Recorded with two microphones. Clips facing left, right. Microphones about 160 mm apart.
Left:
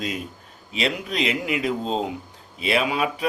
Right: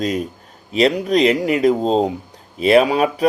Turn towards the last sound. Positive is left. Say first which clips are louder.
# right 9 dB
turn(degrees=-40)  # may be behind; listen again after turning